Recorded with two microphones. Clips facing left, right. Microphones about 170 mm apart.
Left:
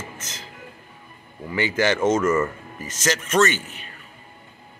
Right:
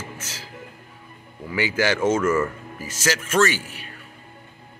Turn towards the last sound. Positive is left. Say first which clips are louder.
# even
turn(degrees=-10)  # may be behind; listen again after turning